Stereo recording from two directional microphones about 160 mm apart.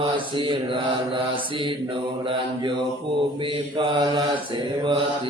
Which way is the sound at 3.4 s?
30° right (ahead or behind).